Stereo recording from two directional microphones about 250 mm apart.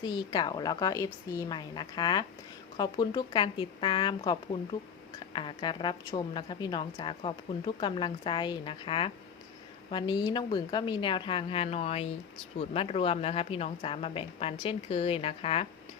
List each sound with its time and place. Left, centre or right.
0.0 s a woman's voice: centre